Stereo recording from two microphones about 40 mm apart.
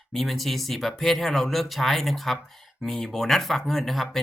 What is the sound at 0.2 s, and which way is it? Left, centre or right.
Speech, centre.